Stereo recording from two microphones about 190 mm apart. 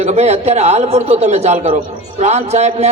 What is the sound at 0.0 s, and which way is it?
A man's voice, 35° right (ahead or behind).